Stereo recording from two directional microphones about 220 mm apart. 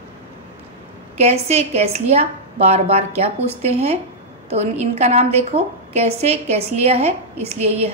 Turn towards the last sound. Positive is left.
turn(degrees=-30)  # may be behind; listen again after turning